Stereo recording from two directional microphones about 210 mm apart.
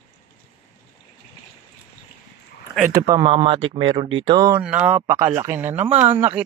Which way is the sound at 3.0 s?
20° right (ahead or behind).